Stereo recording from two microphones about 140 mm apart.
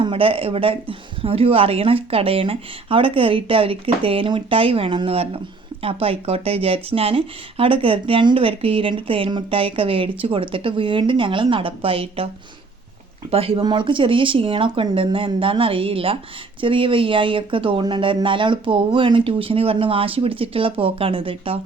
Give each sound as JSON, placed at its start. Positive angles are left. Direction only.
{"t": 0.0, "sound": "speech", "side_deg": -40}
{"t": 13.3, "sound": "speech", "side_deg": -40}